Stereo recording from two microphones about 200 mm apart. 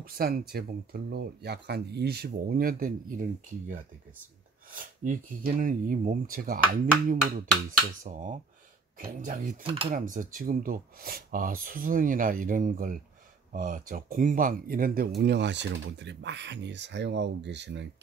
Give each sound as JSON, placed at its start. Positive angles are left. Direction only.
{"t": 0.0, "sound": "speech", "side_deg": -50}
{"t": 9.6, "sound": "cutlery", "side_deg": -25}
{"t": 9.8, "sound": "speech", "side_deg": -40}